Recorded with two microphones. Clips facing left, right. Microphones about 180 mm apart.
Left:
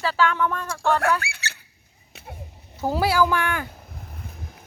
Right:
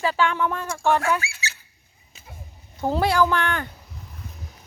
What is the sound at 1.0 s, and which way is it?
Speech, 60° left (ahead or behind).